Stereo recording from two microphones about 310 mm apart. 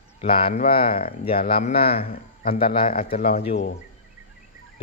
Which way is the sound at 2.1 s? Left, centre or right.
Left.